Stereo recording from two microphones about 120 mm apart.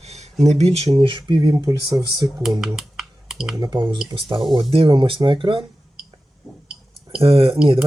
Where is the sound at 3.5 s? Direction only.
35° right (ahead or behind).